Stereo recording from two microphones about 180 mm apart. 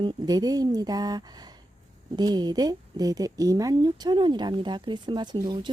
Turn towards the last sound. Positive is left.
turn(degrees=-20)  # may be behind; listen again after turning